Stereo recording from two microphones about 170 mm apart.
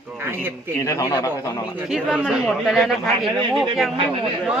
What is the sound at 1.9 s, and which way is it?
Speech, 5° right (ahead or behind).